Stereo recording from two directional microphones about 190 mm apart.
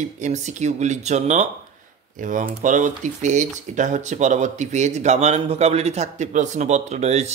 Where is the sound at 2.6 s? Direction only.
40° right (ahead or behind).